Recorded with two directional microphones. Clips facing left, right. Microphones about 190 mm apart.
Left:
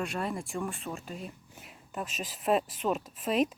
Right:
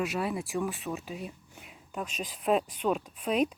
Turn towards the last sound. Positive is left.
turn(degrees=0)  # may be behind; listen again after turning